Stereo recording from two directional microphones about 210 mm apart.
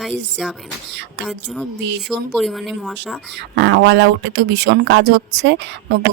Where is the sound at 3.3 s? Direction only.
55° right (ahead or behind).